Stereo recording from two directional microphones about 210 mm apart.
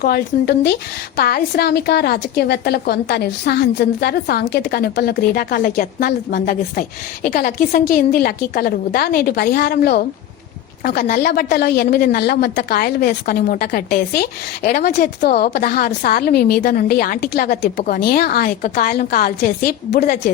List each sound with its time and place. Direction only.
0.0 s a woman's voice: 50° left (ahead or behind)